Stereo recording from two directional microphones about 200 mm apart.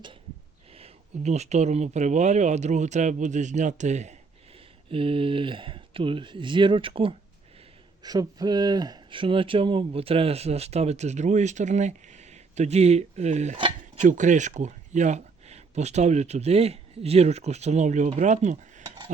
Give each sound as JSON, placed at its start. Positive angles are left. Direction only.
{"t": 0.7, "sound": "speech", "side_deg": -30}